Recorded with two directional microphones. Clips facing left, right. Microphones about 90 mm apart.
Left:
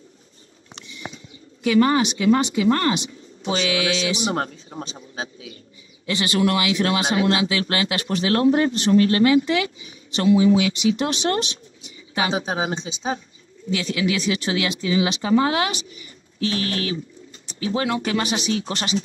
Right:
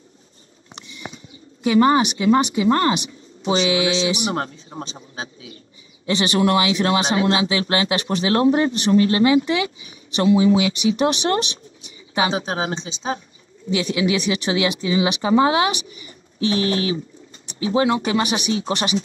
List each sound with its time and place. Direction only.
1.6 s speech: 25° right (ahead or behind)
6.0 s speech: 20° right (ahead or behind)
12.4 s speech: 15° left (ahead or behind)
13.7 s speech: 20° right (ahead or behind)